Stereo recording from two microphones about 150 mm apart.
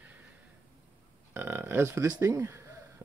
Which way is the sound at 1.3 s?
15° right (ahead or behind).